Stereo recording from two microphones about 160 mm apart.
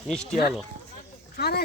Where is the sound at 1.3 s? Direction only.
85° left.